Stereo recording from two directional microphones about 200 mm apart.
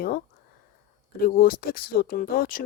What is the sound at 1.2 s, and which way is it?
Speech, 45° left (ahead or behind).